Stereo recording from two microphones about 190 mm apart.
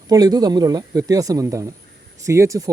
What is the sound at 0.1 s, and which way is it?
A man's voice, 20° right (ahead or behind).